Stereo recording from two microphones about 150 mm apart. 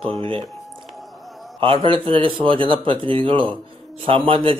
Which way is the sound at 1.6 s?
35° right (ahead or behind).